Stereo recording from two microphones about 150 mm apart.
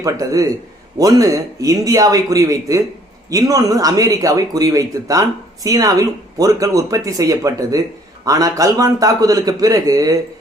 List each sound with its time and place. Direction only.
0.0 s speech: 20° right (ahead or behind)